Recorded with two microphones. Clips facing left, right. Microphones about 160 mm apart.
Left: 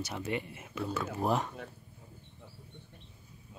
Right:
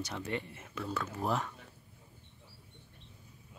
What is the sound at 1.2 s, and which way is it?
Speech, 20° left (ahead or behind).